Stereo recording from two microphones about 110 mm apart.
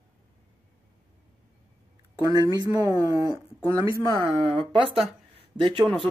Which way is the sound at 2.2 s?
35° right (ahead or behind).